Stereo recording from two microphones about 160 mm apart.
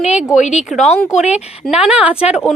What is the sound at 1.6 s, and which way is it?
Speech, 5° right (ahead or behind).